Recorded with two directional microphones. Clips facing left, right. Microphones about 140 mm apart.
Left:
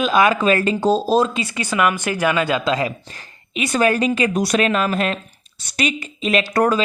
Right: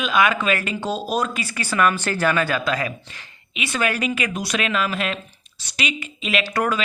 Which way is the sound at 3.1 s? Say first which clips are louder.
Left 6 dB; 40° left (ahead or behind).